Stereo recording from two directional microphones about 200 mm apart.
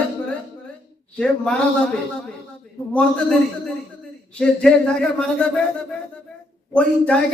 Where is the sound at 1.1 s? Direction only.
5° left (ahead or behind).